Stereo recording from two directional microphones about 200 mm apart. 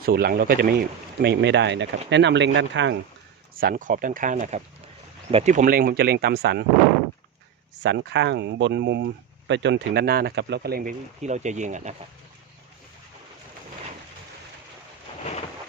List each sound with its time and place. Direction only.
0.0 s speech: 50° right (ahead or behind)
3.5 s speech: 45° right (ahead or behind)
7.8 s speech: 60° right (ahead or behind); by 11.9 s 35° right (ahead or behind)